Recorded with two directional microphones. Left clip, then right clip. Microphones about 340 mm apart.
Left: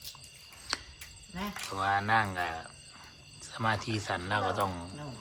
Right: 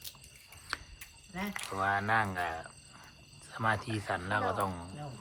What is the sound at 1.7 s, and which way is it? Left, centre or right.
Speech, centre.